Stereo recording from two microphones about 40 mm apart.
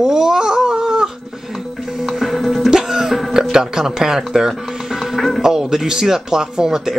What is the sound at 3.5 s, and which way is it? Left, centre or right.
Speech, centre.